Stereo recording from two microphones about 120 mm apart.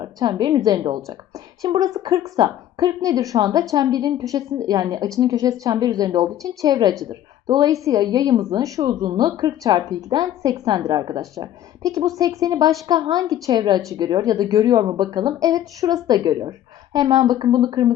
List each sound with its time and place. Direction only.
0.0 s speech: 35° right (ahead or behind)